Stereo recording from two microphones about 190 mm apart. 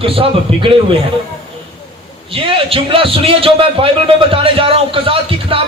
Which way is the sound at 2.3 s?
30° right (ahead or behind).